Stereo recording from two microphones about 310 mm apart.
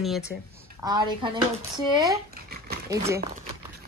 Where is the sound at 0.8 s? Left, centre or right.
Centre.